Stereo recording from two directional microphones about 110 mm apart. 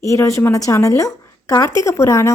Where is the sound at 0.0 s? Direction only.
30° left (ahead or behind).